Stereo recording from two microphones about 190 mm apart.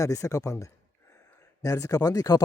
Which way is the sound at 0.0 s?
15° left (ahead or behind).